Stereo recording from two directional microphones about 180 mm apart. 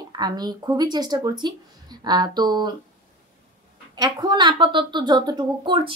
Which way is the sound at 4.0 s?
25° right (ahead or behind).